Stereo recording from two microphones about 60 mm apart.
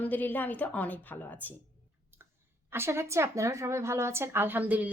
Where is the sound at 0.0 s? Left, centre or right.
Left.